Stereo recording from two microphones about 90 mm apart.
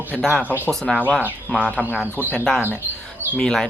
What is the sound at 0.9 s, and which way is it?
Speech, 15° left (ahead or behind).